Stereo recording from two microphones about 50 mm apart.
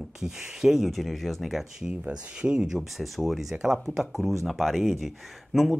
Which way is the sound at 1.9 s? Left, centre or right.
Right.